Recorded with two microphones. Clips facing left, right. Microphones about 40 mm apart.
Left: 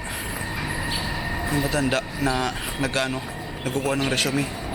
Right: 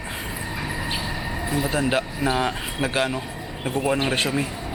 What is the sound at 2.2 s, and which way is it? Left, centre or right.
Speech, right.